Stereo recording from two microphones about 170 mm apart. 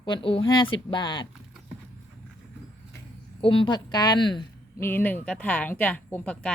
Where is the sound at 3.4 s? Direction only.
30° left (ahead or behind).